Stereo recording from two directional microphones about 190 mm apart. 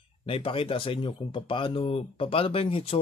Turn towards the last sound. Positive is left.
turn(degrees=30)  # may be behind; listen again after turning